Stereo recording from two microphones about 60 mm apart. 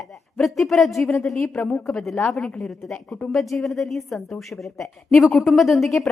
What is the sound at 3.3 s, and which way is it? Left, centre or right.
A woman's voice, centre.